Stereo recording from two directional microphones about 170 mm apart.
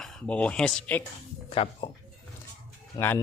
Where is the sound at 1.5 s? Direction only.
30° left (ahead or behind).